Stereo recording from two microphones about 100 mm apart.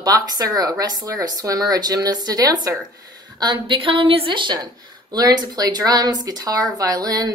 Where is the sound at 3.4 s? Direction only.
55° right (ahead or behind).